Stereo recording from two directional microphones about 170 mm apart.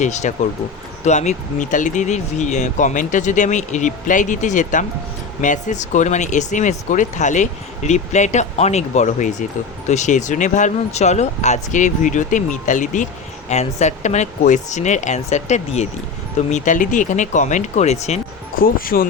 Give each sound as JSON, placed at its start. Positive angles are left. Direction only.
{"t": 0.0, "sound": "speech", "side_deg": 45}
{"t": 18.6, "sound": "speech", "side_deg": 60}